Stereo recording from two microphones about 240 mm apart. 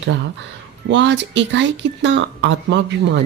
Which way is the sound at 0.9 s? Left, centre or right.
Right.